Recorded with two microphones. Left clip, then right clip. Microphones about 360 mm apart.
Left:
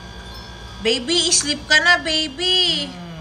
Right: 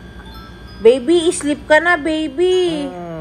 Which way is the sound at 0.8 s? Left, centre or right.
Centre.